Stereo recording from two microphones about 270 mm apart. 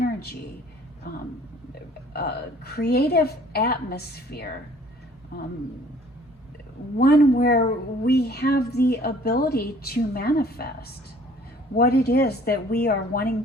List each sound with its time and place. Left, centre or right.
0.0 s a sound: left
2.1 s speech: left
7.0 s speech: left